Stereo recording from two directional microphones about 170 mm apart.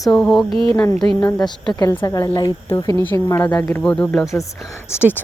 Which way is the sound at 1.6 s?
20° left (ahead or behind).